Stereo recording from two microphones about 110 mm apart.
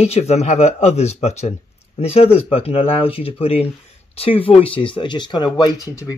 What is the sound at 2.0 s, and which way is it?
Speech, 70° left (ahead or behind).